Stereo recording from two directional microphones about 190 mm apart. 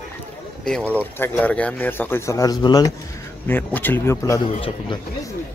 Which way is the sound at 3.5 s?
10° left (ahead or behind).